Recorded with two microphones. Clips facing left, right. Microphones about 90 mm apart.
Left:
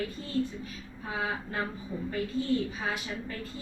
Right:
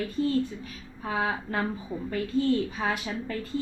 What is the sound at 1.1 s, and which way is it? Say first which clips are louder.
Speech: right 5 dB; 70° right (ahead or behind).